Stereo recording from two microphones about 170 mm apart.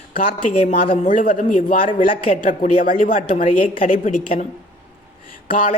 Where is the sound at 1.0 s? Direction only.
50° left (ahead or behind).